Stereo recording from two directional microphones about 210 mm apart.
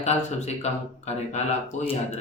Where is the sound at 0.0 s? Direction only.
30° left (ahead or behind).